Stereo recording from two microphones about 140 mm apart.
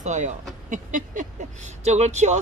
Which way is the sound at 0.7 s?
70° right (ahead or behind).